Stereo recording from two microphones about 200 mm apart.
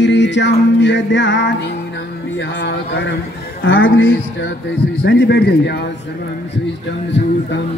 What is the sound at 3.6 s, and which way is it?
Speech, 75° left (ahead or behind).